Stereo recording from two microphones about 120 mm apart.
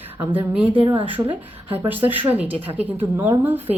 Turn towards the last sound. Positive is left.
turn(degrees=-15)  # may be behind; listen again after turning